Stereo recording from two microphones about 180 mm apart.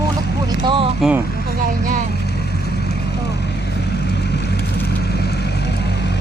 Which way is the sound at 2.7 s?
65° left (ahead or behind).